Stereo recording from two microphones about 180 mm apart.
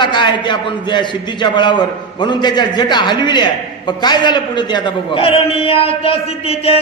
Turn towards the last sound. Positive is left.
turn(degrees=30)  # may be behind; listen again after turning